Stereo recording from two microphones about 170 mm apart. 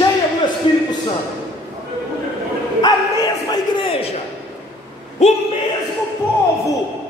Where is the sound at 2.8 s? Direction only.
25° left (ahead or behind).